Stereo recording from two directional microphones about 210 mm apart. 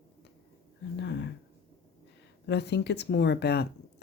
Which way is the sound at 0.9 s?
55° left (ahead or behind).